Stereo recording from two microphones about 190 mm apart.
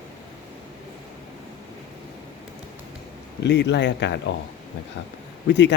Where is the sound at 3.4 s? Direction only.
65° left (ahead or behind).